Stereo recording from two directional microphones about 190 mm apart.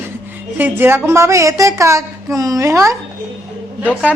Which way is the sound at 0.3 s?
10° right (ahead or behind).